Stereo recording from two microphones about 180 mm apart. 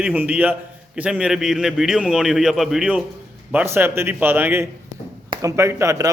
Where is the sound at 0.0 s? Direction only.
10° right (ahead or behind).